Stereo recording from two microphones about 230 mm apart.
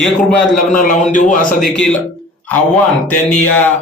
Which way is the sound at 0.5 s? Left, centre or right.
Left.